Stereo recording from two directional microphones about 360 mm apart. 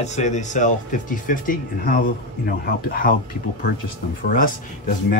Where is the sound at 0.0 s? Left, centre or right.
Centre.